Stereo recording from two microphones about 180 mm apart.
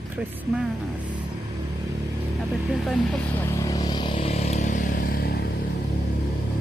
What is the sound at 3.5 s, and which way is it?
Vehicle, 20° left (ahead or behind).